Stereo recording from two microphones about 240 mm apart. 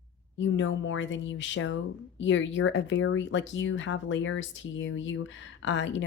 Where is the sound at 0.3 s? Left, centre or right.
Left.